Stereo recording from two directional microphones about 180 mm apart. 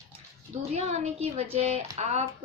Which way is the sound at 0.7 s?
35° right (ahead or behind).